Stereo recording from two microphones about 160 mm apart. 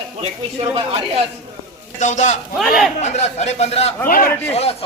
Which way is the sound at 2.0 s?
50° left (ahead or behind).